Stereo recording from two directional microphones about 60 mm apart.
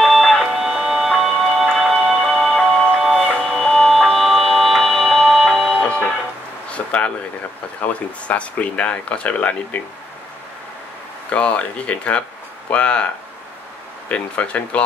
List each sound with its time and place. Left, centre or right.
0.0 s music: centre
6.7 s a sound: left
7.8 s speech: left
11.2 s speech: left
14.0 s speech: left